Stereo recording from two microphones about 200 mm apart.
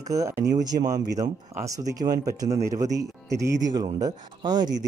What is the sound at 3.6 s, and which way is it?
Speech, 20° right (ahead or behind).